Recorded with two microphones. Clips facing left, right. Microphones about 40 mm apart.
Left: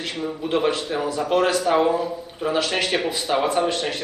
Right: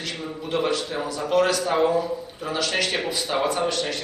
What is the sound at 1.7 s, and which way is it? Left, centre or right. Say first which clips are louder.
Speech: left 2 dB; centre.